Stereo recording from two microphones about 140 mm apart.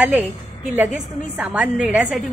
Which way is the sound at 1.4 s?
10° right (ahead or behind).